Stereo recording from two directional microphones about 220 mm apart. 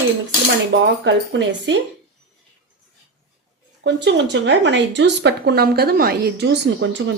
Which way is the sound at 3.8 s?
55° right (ahead or behind).